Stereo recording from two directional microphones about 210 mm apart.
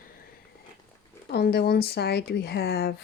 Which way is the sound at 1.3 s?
50° left (ahead or behind).